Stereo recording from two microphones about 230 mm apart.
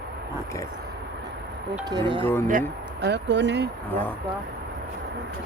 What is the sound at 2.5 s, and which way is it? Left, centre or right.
Speech, right.